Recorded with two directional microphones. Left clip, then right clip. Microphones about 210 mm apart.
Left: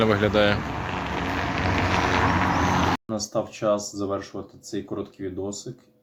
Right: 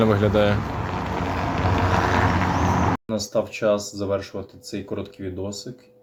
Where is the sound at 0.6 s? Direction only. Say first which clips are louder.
Right 1 dB; 50° right (ahead or behind); by 2.5 s 25° right (ahead or behind).